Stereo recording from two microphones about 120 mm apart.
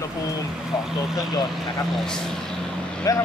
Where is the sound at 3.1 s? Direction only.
30° left (ahead or behind).